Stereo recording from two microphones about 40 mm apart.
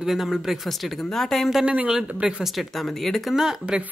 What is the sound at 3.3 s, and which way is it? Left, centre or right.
Speech, centre.